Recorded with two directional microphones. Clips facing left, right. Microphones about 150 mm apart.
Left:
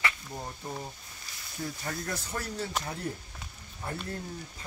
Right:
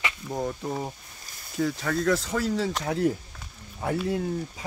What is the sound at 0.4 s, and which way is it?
Speech, 75° right (ahead or behind).